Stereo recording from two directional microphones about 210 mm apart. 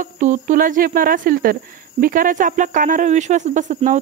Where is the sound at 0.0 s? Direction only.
35° right (ahead or behind).